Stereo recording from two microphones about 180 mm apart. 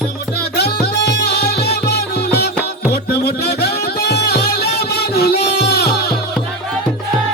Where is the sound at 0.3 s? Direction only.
65° left (ahead or behind).